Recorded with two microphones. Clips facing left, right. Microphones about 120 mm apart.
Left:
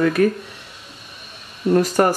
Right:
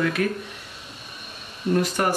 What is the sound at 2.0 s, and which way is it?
Speech, 45° left (ahead or behind).